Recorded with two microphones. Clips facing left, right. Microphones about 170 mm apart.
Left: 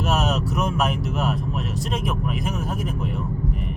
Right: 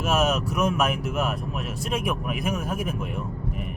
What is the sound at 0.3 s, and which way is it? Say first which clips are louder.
Speech: even; 35° left (ahead or behind).